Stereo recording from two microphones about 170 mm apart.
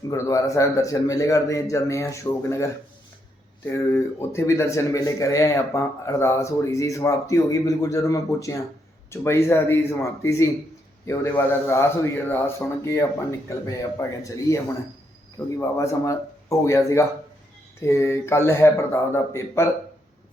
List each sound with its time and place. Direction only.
0.1 s speech: 20° left (ahead or behind)